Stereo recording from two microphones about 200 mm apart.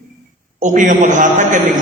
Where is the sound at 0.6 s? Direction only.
40° right (ahead or behind).